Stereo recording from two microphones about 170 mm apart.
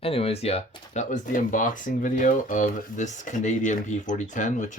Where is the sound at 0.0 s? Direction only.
35° left (ahead or behind).